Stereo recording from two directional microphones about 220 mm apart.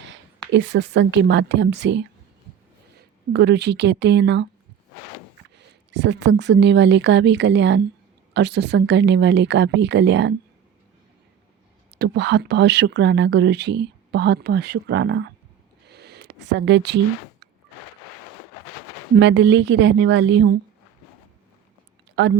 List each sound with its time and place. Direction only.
0.0 s speech: 55° right (ahead or behind)
3.3 s speech: 50° right (ahead or behind)
5.5 s speech: 55° right (ahead or behind)
11.9 s speech: 50° right (ahead or behind)
15.9 s a sound: 50° right (ahead or behind)
19.2 s speech: 50° right (ahead or behind)
22.2 s speech: 55° right (ahead or behind)